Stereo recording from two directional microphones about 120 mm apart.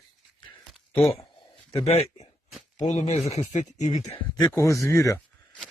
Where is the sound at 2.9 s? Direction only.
75° left (ahead or behind).